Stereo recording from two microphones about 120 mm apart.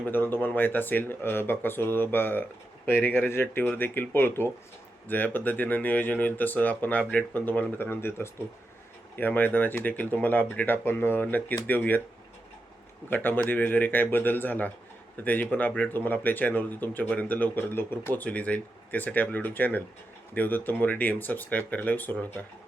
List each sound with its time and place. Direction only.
0.0 s speech: 15° left (ahead or behind)
13.1 s speech: 15° left (ahead or behind)